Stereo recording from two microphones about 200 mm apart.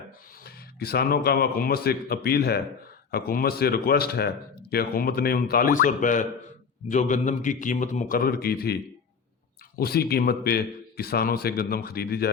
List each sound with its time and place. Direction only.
0.4 s a man's voice: 50° left (ahead or behind)